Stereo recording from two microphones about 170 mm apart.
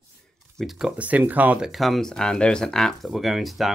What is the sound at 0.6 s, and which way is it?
Speech, centre (ahead or behind).